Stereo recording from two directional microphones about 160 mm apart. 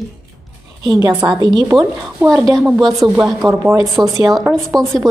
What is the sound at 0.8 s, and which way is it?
A woman's voice, 25° right (ahead or behind).